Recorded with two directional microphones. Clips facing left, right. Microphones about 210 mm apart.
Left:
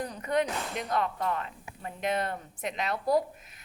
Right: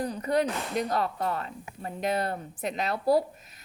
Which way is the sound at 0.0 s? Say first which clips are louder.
Right 3 dB; 35° right (ahead or behind).